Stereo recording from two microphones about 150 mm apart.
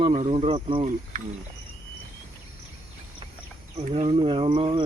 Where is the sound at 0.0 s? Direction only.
40° right (ahead or behind).